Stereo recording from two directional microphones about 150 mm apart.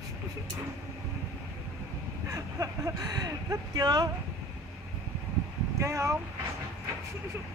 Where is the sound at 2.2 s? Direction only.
20° right (ahead or behind).